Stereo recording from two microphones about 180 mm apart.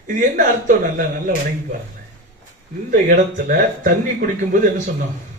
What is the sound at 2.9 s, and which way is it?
Speech, 45° right (ahead or behind).